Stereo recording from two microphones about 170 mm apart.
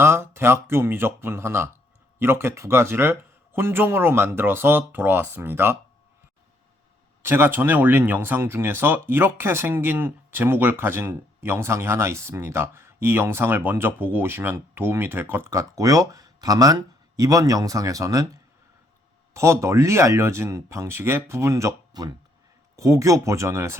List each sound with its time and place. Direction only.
0.0 s speech: 15° right (ahead or behind)
7.2 s speech: 15° right (ahead or behind)
19.3 s speech: 15° right (ahead or behind)